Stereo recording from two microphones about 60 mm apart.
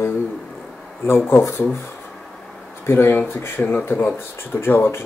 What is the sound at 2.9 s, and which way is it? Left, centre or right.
Speech, left.